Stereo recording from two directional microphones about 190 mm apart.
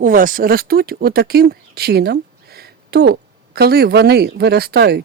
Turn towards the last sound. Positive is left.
turn(degrees=-60)  # may be behind; listen again after turning